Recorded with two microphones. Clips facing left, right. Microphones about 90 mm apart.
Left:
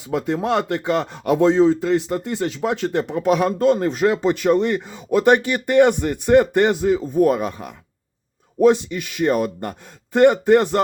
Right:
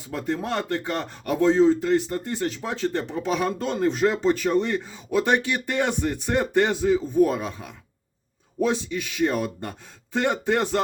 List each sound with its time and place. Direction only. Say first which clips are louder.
0.1 s speech: left 7 dB; 85° left
2.6 s speech: left 6 dB; 65° left (ahead or behind)
4.4 s speech: left 5 dB; 65° left (ahead or behind); by 10.8 s 50° left (ahead or behind)